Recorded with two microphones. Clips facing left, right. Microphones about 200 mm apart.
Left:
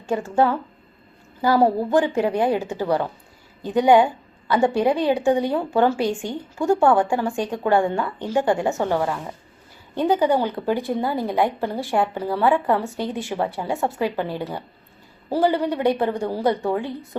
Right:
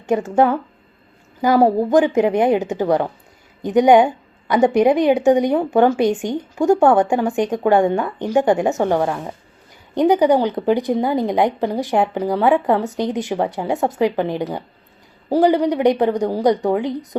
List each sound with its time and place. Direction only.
0.0 s a woman's voice: 20° right (ahead or behind)